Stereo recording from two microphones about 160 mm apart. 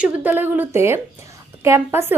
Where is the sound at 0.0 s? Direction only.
10° right (ahead or behind).